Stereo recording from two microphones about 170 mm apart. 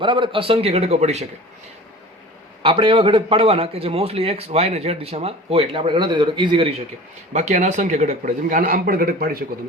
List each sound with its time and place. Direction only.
0.0 s a man's voice: 30° right (ahead or behind)
2.6 s a man's voice: 30° right (ahead or behind)
7.3 s speech: 45° right (ahead or behind)